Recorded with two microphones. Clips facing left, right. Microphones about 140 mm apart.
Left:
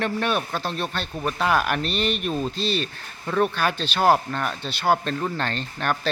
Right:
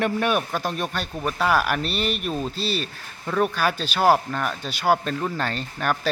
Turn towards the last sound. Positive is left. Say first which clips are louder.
# right 1 dB
turn(degrees=-5)  # may be behind; listen again after turning